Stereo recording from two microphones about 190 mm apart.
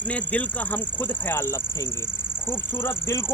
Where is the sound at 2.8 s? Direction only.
15° left (ahead or behind).